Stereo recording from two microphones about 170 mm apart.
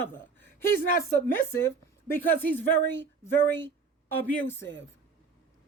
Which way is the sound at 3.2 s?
15° left (ahead or behind).